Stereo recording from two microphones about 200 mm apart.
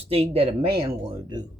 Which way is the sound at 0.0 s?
30° right (ahead or behind).